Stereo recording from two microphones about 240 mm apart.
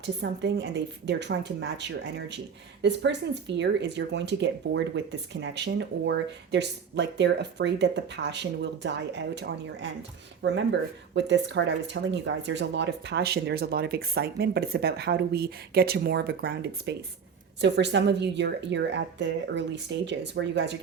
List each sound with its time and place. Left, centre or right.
0.0 s speech: right